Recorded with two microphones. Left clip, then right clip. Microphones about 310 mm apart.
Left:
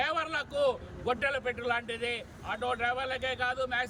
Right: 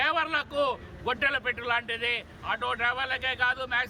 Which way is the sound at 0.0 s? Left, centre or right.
Centre.